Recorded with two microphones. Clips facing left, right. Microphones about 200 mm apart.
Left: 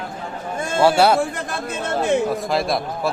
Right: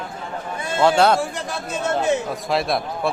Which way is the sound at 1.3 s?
55° left (ahead or behind).